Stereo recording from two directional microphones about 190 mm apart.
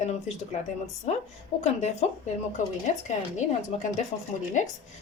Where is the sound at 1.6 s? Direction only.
35° left (ahead or behind).